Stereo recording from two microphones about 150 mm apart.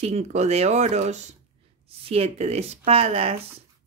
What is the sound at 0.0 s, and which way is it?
Speech, 45° right (ahead or behind).